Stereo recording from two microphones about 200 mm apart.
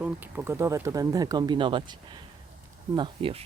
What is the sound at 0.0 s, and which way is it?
Speech, 10° right (ahead or behind).